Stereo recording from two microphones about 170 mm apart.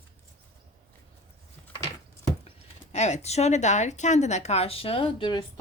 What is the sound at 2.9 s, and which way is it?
Speech, 40° left (ahead or behind).